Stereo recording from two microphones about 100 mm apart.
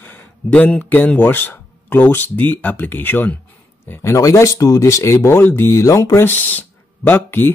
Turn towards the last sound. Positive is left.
turn(degrees=20)  # may be behind; listen again after turning